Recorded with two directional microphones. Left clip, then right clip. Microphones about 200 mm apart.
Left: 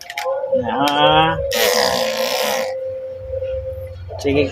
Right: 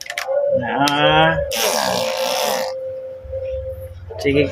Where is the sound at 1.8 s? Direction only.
35° left (ahead or behind).